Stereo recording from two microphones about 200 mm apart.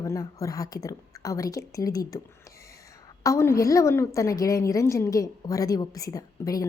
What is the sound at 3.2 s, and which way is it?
A woman's voice, 15° left (ahead or behind).